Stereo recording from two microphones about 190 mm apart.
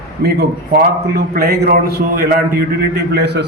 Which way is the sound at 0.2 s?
55° right (ahead or behind).